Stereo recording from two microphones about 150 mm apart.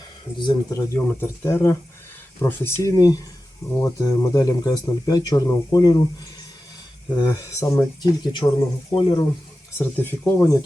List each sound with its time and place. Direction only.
0.3 s speech: 30° left (ahead or behind)
0.9 s speech: 15° left (ahead or behind)
7.1 s speech: 25° left (ahead or behind)
9.7 s speech: 15° left (ahead or behind)